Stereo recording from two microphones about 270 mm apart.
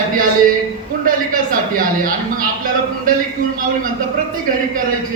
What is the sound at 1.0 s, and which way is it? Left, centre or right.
A man's voice, right.